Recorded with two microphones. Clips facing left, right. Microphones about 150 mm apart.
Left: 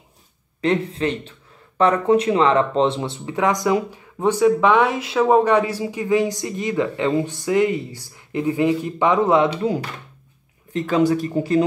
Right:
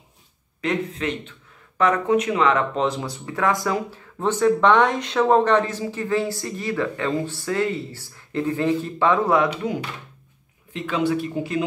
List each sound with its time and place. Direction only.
0.6 s speech: 30° left (ahead or behind)
10.7 s speech: 40° left (ahead or behind)